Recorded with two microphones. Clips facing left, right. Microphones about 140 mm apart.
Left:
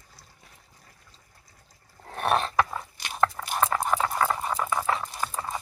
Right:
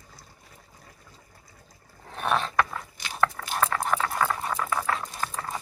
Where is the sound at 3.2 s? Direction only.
20° left (ahead or behind).